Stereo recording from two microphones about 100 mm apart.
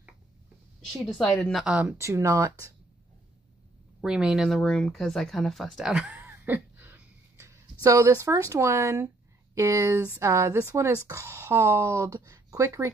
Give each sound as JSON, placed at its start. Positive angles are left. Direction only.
{"t": 0.9, "sound": "speech", "side_deg": 0}
{"t": 1.7, "sound": "speech", "side_deg": -10}
{"t": 2.0, "sound": "speech", "side_deg": -30}
{"t": 4.0, "sound": "speech", "side_deg": -5}
{"t": 6.1, "sound": "a sound", "side_deg": -25}
{"t": 7.8, "sound": "speech", "side_deg": -35}